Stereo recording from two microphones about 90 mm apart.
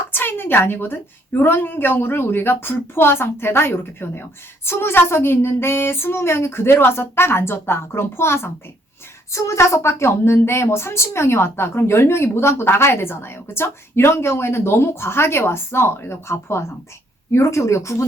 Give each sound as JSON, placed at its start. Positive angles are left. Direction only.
{"t": 0.1, "sound": "a woman's voice", "side_deg": 25}